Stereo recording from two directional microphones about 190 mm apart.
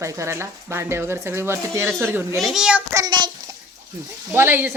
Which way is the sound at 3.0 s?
25° right (ahead or behind).